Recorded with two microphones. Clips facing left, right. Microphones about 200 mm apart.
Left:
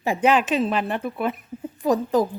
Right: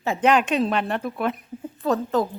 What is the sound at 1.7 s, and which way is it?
Speech, 15° left (ahead or behind).